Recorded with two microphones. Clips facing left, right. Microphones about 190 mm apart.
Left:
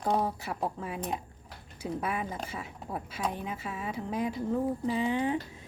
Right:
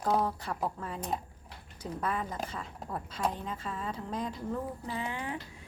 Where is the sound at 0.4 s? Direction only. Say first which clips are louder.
Left 1 dB; 10° left (ahead or behind).